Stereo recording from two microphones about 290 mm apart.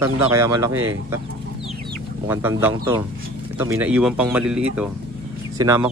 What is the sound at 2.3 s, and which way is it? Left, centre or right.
Speech, centre.